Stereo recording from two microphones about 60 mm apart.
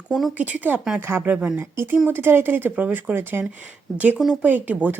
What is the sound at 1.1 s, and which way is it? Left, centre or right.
Speech, right.